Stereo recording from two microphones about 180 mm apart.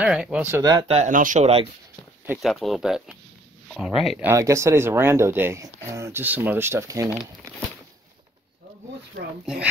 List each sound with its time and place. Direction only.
0.0 s speech: 5° right (ahead or behind)
0.8 s speech: 40° right (ahead or behind)
2.4 s speech: centre (ahead or behind)
4.2 s speech: 15° right (ahead or behind)